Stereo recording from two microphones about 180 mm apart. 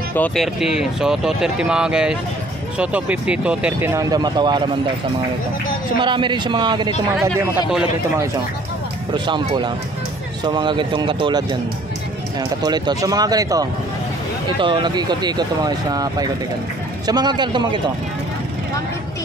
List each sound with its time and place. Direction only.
0.1 s speech: 5° left (ahead or behind); by 4.6 s 25° right (ahead or behind)
5.9 s speech: 25° right (ahead or behind)
7.2 s speech: 5° right (ahead or behind)
9.1 s speech: 25° right (ahead or behind)